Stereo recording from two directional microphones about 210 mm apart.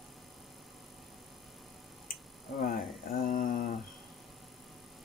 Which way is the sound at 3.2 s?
40° left (ahead or behind).